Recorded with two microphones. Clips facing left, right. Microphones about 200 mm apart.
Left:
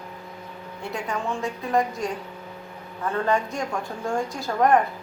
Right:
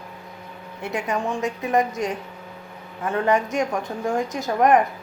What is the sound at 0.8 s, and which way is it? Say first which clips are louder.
A woman's voice: right 4 dB; 20° right (ahead or behind).